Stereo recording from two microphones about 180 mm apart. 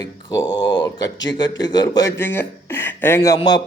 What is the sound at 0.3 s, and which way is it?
A man's voice, 25° left (ahead or behind).